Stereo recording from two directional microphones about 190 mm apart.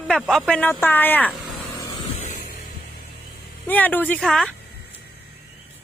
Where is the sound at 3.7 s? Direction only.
10° left (ahead or behind).